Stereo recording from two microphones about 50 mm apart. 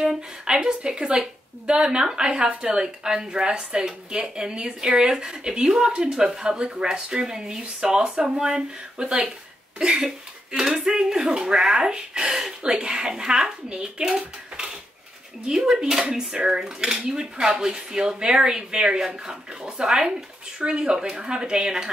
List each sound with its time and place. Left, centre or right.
0.5 s a woman's voice: centre